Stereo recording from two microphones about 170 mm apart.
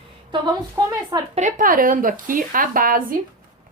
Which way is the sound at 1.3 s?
50° right (ahead or behind).